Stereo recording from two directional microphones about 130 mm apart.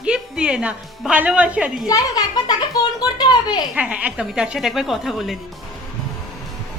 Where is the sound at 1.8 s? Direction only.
30° left (ahead or behind).